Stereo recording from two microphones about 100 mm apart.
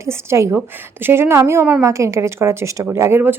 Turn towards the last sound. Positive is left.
turn(degrees=-20)  # may be behind; listen again after turning